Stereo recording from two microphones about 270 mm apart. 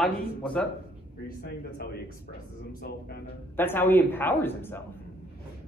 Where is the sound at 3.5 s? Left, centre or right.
Centre.